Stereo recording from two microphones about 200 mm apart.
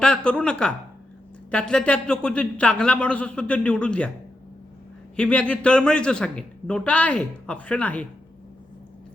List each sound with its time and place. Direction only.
0.0 s speech: 5° left (ahead or behind)
5.1 s speech: 5° left (ahead or behind)